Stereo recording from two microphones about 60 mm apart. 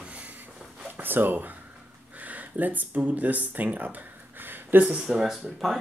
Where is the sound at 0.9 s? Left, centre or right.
Right.